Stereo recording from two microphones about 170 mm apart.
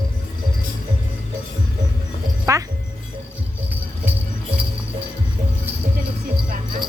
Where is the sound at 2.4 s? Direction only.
20° right (ahead or behind).